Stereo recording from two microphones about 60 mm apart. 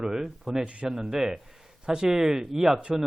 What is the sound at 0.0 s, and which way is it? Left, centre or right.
Speech, centre.